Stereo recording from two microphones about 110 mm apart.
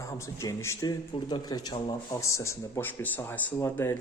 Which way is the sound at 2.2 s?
25° left (ahead or behind).